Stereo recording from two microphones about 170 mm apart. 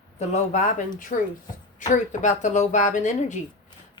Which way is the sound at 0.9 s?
50° left (ahead or behind).